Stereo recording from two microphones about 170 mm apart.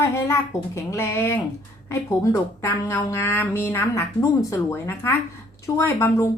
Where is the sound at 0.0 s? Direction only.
15° left (ahead or behind).